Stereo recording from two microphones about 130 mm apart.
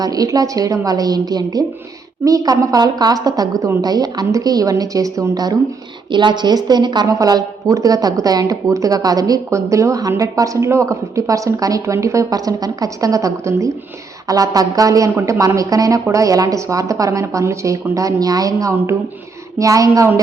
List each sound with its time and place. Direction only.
0.0 s speech: 30° right (ahead or behind)